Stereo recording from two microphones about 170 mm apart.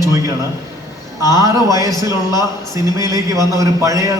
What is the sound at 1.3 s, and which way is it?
Speech, 20° right (ahead or behind).